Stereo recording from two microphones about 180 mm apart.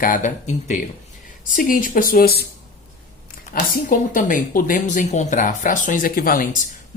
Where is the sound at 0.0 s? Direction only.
45° left (ahead or behind).